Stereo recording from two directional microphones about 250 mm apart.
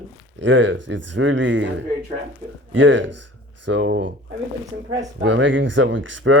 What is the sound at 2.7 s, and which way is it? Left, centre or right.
Speech, right.